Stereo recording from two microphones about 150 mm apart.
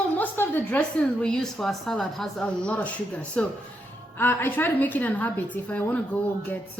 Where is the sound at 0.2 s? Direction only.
10° left (ahead or behind).